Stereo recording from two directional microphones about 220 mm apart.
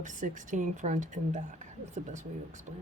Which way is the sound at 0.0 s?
35° right (ahead or behind).